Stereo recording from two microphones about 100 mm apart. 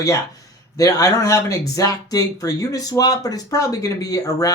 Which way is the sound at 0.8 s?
35° left (ahead or behind).